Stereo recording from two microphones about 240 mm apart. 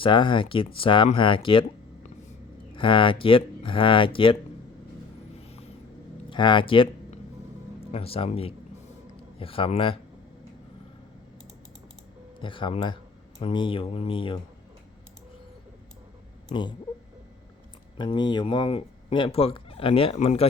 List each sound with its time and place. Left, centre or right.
0.0 s speech: left
2.7 s speech: left
6.3 s speech: centre
12.4 s speech: left
16.5 s speech: centre
17.9 s speech: centre